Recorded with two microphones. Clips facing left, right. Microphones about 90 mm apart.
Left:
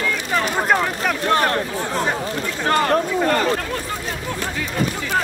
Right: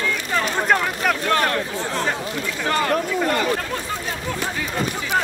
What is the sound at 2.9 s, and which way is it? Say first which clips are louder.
Speech: left 3 dB; 40° left (ahead or behind).